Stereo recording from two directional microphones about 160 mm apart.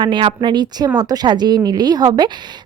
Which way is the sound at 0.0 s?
30° right (ahead or behind).